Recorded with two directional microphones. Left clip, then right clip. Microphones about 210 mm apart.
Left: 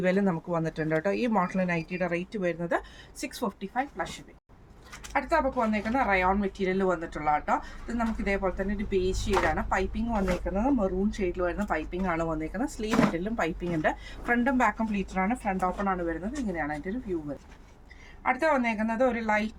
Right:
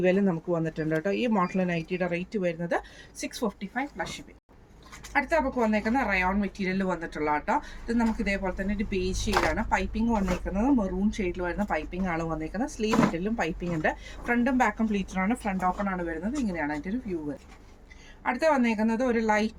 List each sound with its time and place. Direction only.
0.0 s speech: 25° left (ahead or behind)
5.1 s speech: 15° left (ahead or behind)
18.2 s speech: 15° left (ahead or behind)